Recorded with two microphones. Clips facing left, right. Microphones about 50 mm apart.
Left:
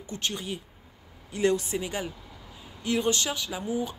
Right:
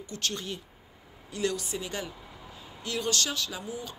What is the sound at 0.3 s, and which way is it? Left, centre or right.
Speech, centre.